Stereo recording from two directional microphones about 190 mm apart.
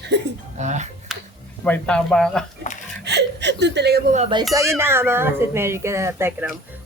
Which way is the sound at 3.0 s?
65° right (ahead or behind).